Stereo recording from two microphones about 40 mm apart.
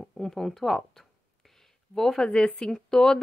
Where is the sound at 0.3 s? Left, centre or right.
Centre.